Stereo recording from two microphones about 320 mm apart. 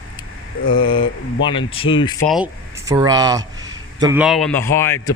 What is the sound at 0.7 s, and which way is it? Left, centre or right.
Speech, centre.